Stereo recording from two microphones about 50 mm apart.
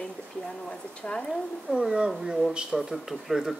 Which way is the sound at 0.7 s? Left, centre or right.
Centre.